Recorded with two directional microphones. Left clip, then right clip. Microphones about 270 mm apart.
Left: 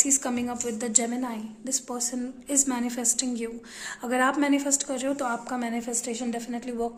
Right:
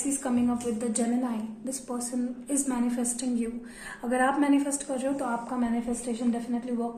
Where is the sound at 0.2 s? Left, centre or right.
Left.